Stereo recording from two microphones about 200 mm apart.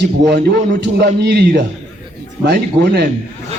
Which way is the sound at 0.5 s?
55° right (ahead or behind).